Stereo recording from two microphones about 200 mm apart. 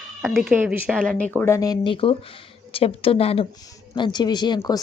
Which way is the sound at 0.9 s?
5° left (ahead or behind).